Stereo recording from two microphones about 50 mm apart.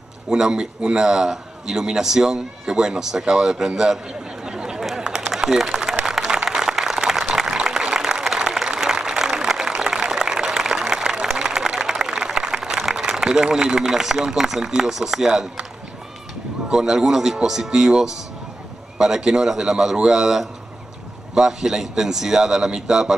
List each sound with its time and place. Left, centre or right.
0.3 s a man's voice: centre
5.0 s a sound: centre
5.3 s applause: centre
9.3 s a sound: centre
12.9 s a man's voice: centre
16.7 s a man's voice: centre